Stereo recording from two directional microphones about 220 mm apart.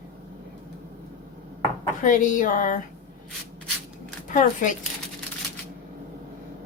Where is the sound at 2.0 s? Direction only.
35° left (ahead or behind).